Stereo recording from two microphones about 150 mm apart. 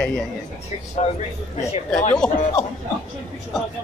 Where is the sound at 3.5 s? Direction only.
Centre (ahead or behind).